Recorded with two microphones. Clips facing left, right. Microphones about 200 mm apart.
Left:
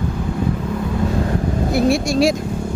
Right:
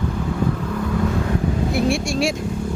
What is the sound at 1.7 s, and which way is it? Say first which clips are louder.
Speech: left 6 dB; 40° left (ahead or behind).